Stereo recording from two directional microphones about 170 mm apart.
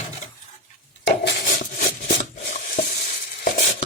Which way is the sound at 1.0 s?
90° left.